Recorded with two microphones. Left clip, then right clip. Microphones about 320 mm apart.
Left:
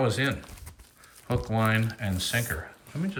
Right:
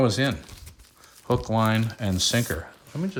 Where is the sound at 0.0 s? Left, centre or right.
Centre.